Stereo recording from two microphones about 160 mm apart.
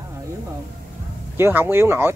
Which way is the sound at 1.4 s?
15° right (ahead or behind).